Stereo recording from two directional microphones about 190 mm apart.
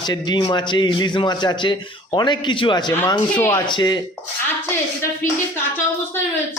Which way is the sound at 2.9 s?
10° left (ahead or behind).